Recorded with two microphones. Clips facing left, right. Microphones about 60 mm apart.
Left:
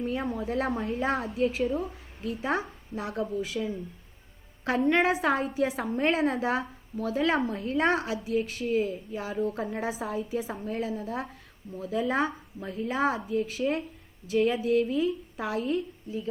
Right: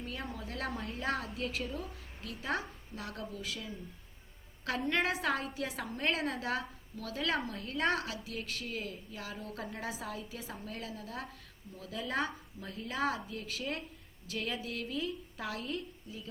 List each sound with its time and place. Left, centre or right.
0.0 s a woman's voice: left